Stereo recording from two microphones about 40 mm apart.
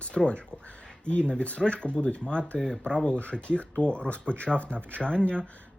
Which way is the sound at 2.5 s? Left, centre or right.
Centre.